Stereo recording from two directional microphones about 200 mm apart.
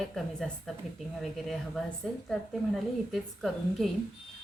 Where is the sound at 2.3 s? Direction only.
Centre (ahead or behind).